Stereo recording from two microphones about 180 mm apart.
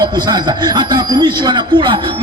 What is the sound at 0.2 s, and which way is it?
Speech, 25° right (ahead or behind).